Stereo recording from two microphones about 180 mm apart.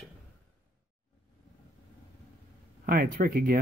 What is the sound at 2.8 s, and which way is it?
Speech, 55° right (ahead or behind).